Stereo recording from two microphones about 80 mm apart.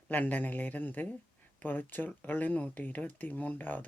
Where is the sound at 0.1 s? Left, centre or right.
Left.